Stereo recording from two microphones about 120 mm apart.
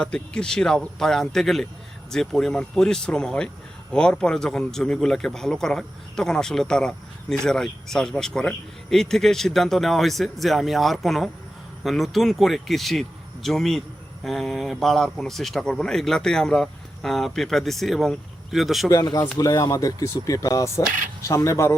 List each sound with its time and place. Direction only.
0.0 s a man's voice: 5° left (ahead or behind)
19.4 s speech: 30° left (ahead or behind)